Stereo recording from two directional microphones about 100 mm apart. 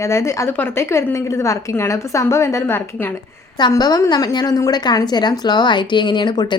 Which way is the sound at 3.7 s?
40° left (ahead or behind).